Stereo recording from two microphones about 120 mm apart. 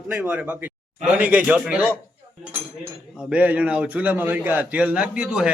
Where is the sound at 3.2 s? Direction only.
10° right (ahead or behind).